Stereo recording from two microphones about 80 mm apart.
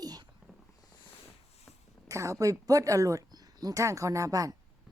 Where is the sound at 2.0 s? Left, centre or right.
Right.